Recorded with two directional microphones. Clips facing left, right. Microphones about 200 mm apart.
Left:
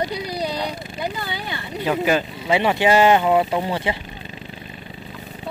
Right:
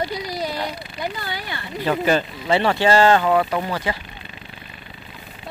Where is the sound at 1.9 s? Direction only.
5° left (ahead or behind); by 4.0 s 25° left (ahead or behind).